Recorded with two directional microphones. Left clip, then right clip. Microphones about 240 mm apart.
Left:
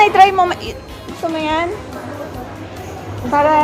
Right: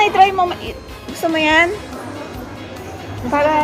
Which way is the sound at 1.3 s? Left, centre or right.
Centre.